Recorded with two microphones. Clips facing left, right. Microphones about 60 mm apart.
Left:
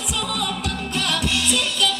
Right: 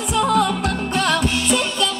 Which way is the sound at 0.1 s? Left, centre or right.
Right.